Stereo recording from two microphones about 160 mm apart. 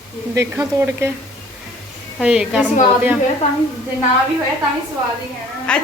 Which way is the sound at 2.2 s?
5° right (ahead or behind).